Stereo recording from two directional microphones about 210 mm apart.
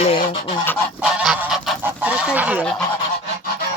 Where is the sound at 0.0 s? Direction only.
25° left (ahead or behind).